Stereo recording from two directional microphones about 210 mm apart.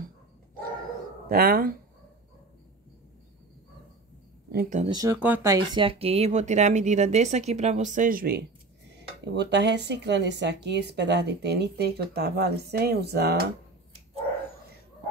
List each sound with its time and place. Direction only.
1.3 s speech: 45° right (ahead or behind)
4.5 s speech: 45° right (ahead or behind)
4.7 s speech: 20° right (ahead or behind); by 8.4 s 45° right (ahead or behind)
8.9 s speech: 55° right (ahead or behind)